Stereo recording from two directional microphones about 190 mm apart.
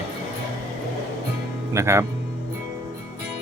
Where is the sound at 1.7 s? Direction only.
15° right (ahead or behind).